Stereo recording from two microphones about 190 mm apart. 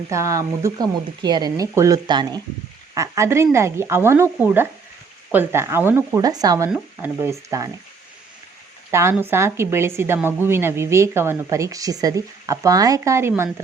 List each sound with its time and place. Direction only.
0.1 s a woman's voice: 15° right (ahead or behind)
6.7 s a woman's voice: 5° right (ahead or behind)
8.9 s a woman's voice: 15° right (ahead or behind)